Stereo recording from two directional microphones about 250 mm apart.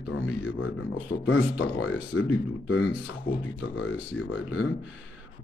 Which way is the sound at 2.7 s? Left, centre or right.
Left.